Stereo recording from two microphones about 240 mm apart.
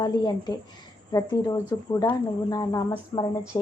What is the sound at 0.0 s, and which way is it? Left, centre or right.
Speech, centre.